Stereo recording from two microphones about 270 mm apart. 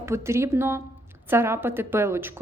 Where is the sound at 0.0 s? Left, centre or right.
Centre.